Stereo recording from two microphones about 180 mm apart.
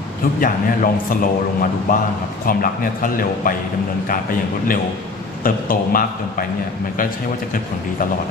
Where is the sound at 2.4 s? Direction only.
50° left (ahead or behind).